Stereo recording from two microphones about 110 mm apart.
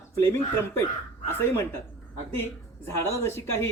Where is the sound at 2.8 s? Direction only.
25° left (ahead or behind).